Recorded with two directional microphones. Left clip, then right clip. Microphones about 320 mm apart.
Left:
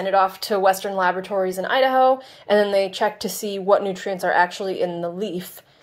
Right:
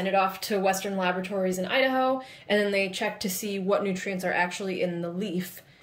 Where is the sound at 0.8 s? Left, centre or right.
Left.